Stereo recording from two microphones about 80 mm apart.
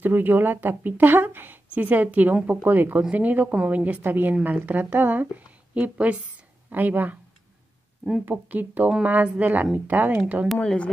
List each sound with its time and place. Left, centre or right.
0.0 s a woman's voice: right
8.3 s a woman's voice: right
10.5 s a woman's voice: centre